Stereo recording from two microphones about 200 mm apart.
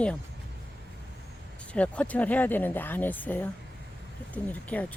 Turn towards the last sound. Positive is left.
turn(degrees=5)  # may be behind; listen again after turning